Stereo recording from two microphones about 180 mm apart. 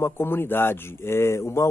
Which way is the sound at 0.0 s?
10° left (ahead or behind).